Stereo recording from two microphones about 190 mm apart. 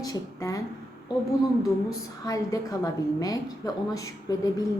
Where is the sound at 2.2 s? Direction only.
20° left (ahead or behind).